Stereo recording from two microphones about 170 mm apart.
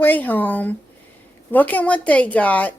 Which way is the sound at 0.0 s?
10° left (ahead or behind).